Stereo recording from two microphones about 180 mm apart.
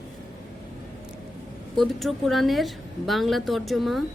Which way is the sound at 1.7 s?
Centre (ahead or behind).